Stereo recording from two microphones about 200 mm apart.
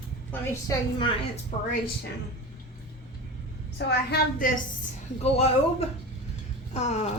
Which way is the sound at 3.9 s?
50° left (ahead or behind).